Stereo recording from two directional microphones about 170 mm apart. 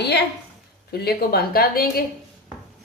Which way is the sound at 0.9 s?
70° left (ahead or behind).